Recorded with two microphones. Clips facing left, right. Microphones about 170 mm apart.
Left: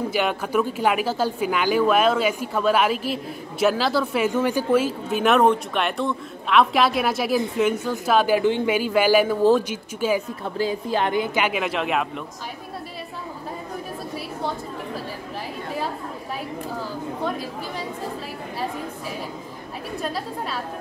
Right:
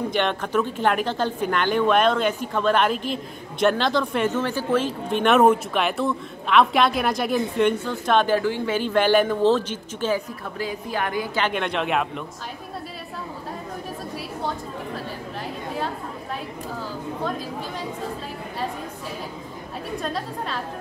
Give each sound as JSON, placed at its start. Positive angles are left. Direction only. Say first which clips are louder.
{"t": 0.1, "sound": "a man's voice", "louder": "even", "side_deg": 5}
{"t": 8.4, "sound": "a woman's voice", "louder": "left 4 dB", "side_deg": 20}
{"t": 8.7, "sound": "speech", "louder": "right 2 dB", "side_deg": 10}
{"t": 10.6, "sound": "a woman's voice", "louder": "left 4 dB", "side_deg": 25}
{"t": 11.3, "sound": "a man's voice", "louder": "left 1 dB", "side_deg": 5}
{"t": 20.0, "sound": "a man's voice", "louder": "left 2 dB", "side_deg": 5}